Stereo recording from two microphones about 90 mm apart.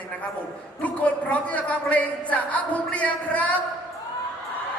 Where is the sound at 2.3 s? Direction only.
15° left (ahead or behind).